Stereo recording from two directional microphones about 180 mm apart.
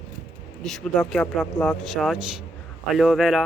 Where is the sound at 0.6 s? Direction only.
5° left (ahead or behind).